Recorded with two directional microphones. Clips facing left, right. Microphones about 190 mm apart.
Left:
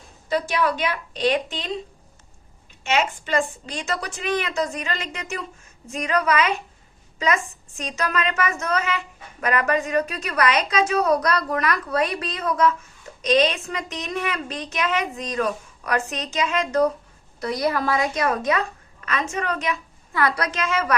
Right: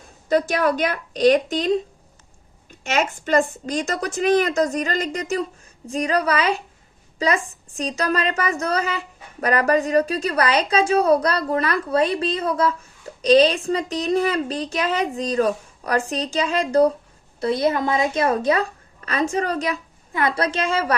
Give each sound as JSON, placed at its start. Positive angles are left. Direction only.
{"t": 0.3, "sound": "a woman's voice", "side_deg": -45}
{"t": 20.1, "sound": "a woman's voice", "side_deg": -25}